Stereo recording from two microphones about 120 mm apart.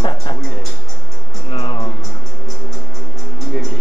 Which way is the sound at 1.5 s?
45° left (ahead or behind).